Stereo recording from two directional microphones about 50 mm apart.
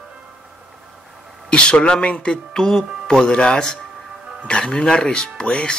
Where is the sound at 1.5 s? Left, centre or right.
Centre.